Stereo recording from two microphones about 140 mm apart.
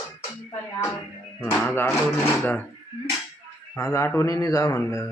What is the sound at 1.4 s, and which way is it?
Speech, 15° left (ahead or behind).